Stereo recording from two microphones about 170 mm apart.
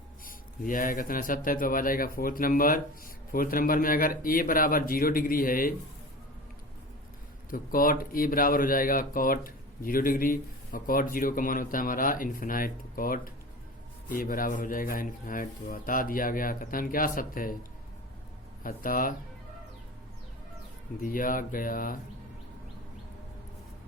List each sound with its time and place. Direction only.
0.3 s speech: 55° left (ahead or behind)
7.5 s speech: 55° left (ahead or behind)
18.6 s speech: 55° left (ahead or behind)
21.0 s speech: 55° left (ahead or behind)